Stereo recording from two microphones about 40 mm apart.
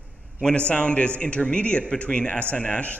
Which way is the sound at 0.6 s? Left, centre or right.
Left.